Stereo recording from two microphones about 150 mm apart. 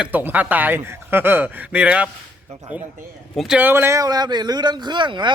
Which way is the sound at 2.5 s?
45° right (ahead or behind).